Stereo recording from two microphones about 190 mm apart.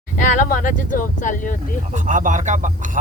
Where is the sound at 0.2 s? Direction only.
45° left (ahead or behind).